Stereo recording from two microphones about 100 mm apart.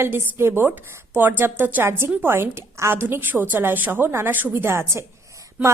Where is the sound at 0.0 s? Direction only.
25° right (ahead or behind).